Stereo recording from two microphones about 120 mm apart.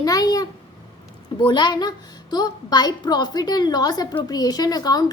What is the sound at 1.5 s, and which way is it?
A woman's voice, 40° left (ahead or behind).